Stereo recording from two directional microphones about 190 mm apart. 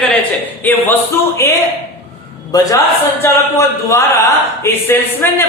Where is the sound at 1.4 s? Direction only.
15° left (ahead or behind).